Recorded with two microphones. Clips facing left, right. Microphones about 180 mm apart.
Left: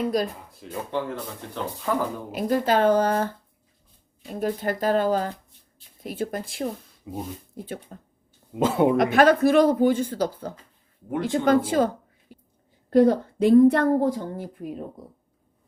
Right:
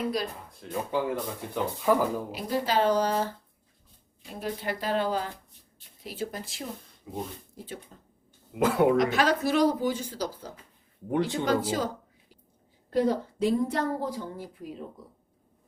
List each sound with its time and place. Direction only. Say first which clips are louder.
0.5 s speech: right 3 dB; centre (ahead or behind)
2.3 s speech: left 5 dB; 50° left (ahead or behind)
4.4 s speech: left 7 dB; 45° left (ahead or behind)
8.5 s speech: left 2 dB; 25° left (ahead or behind)
9.0 s a woman's voice: left 7 dB; 55° left (ahead or behind)
12.3 s a sound: left 12 dB; 55° left (ahead or behind)
12.9 s a woman's voice: left 8 dB; 55° left (ahead or behind)